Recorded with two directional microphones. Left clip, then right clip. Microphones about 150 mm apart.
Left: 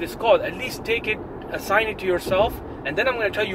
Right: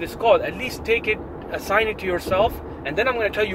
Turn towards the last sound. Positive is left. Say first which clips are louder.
# right 1 dB
turn(degrees=-30)  # may be behind; listen again after turning